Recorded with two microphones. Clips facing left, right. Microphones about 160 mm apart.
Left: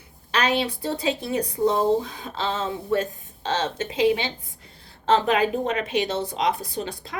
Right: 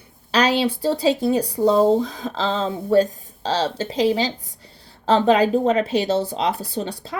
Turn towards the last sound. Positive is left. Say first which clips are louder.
# right 2 dB
turn(degrees=-30)  # may be behind; listen again after turning